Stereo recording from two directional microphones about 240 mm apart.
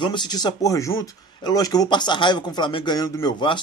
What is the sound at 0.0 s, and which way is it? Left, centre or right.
Speech, centre.